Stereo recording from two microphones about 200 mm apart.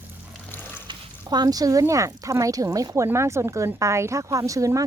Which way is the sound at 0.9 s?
20° right (ahead or behind).